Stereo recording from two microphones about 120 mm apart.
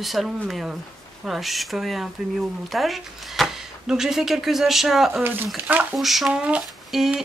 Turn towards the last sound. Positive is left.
turn(degrees=-5)  # may be behind; listen again after turning